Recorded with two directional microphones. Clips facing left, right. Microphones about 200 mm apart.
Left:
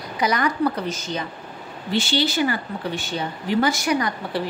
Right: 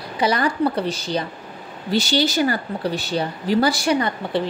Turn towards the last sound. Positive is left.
turn(degrees=-30)  # may be behind; listen again after turning